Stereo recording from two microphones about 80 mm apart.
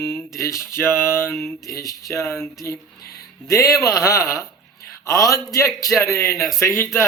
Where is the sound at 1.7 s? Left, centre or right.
Left.